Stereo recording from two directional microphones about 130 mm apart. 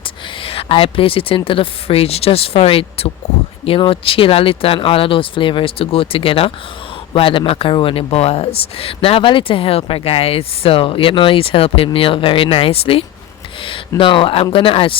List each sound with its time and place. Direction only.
0.4 s speech: 45° left (ahead or behind)